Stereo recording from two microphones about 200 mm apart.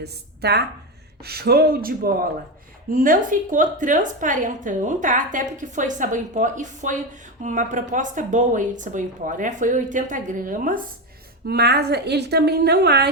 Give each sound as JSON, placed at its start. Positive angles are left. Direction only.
{"t": 0.0, "sound": "a woman's voice", "side_deg": -55}